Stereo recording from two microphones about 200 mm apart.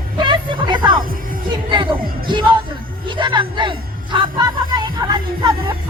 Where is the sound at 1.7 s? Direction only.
25° right (ahead or behind).